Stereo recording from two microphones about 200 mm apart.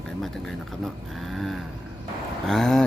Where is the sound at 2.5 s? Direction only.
Centre (ahead or behind).